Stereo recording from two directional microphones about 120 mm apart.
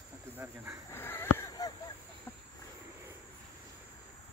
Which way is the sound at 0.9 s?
20° left (ahead or behind).